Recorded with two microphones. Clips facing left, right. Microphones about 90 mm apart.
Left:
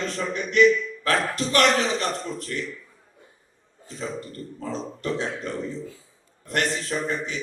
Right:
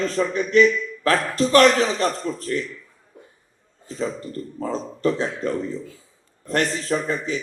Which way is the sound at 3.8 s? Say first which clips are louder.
Right 5 dB; 35° right (ahead or behind).